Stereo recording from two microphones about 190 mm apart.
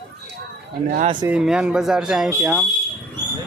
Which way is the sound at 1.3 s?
5° right (ahead or behind).